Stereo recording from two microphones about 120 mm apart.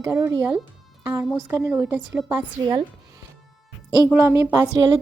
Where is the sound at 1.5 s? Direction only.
15° right (ahead or behind).